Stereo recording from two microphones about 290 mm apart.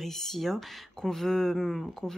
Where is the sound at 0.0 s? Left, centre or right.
Centre.